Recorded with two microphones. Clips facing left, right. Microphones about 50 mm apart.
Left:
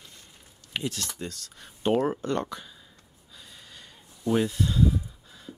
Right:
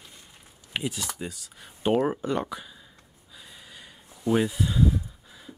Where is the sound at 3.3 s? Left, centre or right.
Centre.